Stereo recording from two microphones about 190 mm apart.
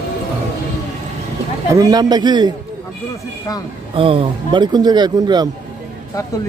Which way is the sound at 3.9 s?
30° right (ahead or behind).